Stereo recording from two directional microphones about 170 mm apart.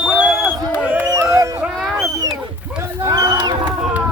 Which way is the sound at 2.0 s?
15° right (ahead or behind).